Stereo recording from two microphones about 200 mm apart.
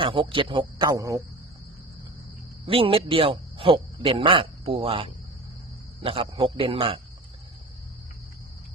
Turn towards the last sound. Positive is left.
turn(degrees=-25)  # may be behind; listen again after turning